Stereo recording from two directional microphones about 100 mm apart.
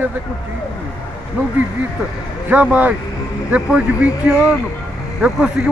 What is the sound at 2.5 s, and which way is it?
Speech, 15° right (ahead or behind).